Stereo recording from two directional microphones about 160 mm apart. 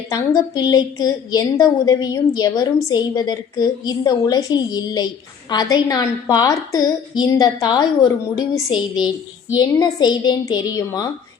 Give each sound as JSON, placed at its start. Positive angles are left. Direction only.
{"t": 0.1, "sound": "a woman's voice", "side_deg": 25}